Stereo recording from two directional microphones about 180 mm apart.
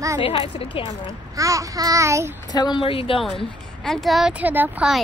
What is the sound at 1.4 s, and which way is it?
Speech, 20° right (ahead or behind).